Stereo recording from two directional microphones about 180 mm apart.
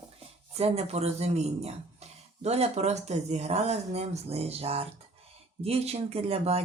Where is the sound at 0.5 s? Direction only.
35° right (ahead or behind).